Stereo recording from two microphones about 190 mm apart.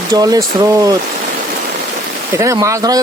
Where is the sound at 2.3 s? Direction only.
15° right (ahead or behind).